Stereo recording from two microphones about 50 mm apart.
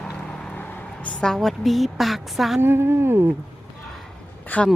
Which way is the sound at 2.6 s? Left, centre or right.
Right.